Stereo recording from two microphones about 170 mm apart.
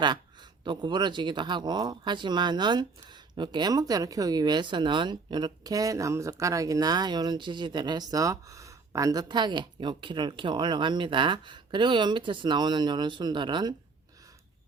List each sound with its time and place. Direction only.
0.6 s speech: 25° right (ahead or behind)